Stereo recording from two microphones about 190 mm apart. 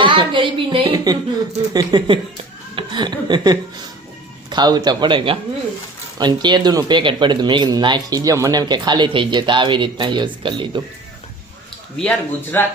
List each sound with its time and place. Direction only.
0.0 s speech: 25° right (ahead or behind)
11.9 s speech: 10° left (ahead or behind)